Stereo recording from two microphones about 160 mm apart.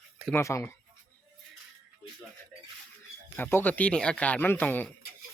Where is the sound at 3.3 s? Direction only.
10° left (ahead or behind).